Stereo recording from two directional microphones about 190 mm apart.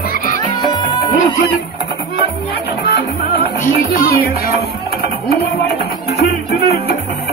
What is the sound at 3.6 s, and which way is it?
Music, 50° left (ahead or behind).